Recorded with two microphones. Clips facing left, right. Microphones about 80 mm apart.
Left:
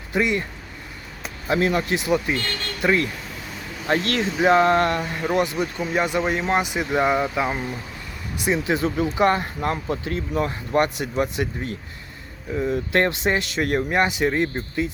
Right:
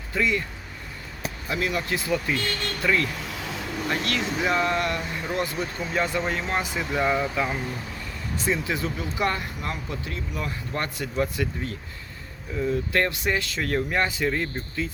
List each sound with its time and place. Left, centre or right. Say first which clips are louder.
0.1 s speech: left 3 dB; left
1.5 s speech: left 6 dB; left
3.8 s speech: left 6 dB; left
4.9 s speech: left 5 dB; left
9.6 s speech: left 7 dB; left
10.8 s speech: left 7 dB; left